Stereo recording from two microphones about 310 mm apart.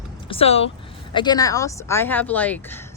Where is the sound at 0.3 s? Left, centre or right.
Centre.